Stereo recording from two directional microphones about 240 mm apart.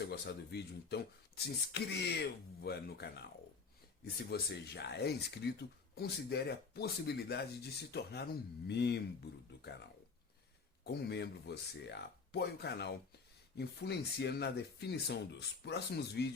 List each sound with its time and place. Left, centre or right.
0.0 s speech: left
10.8 s speech: left